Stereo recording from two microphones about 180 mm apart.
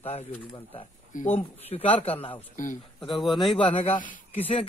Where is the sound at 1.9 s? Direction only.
35° left (ahead or behind).